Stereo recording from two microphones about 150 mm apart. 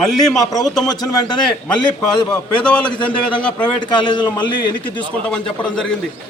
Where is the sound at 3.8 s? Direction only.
30° left (ahead or behind).